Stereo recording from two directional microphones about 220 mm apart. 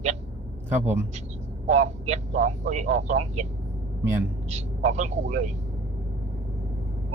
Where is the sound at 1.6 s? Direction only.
30° right (ahead or behind).